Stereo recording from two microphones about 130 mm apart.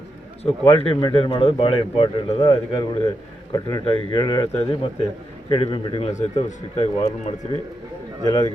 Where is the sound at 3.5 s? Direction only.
30° left (ahead or behind).